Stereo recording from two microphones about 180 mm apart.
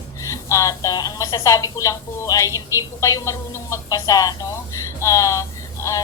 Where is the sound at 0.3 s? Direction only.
15° left (ahead or behind).